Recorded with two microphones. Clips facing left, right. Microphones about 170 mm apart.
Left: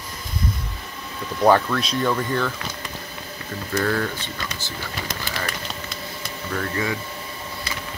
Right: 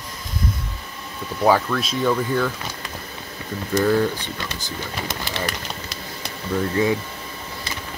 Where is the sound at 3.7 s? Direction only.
15° right (ahead or behind).